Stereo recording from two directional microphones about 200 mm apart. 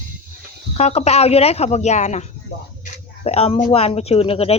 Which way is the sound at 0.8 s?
30° left (ahead or behind).